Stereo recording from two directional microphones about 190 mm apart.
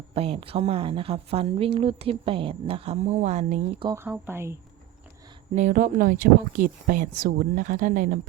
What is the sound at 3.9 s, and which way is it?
Speech, 10° right (ahead or behind).